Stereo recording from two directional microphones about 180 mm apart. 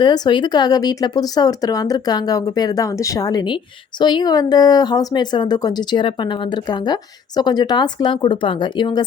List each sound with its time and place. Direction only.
0.0 s speech: 25° left (ahead or behind)